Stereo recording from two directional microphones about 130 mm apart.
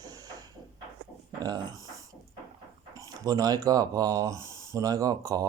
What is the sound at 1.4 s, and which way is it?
Speech, 30° right (ahead or behind).